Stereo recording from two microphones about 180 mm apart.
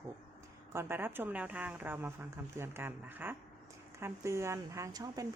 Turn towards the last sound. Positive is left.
turn(degrees=-20)  # may be behind; listen again after turning